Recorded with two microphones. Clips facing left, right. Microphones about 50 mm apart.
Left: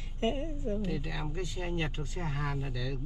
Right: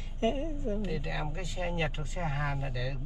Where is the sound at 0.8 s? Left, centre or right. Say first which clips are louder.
Right 1 dB; centre.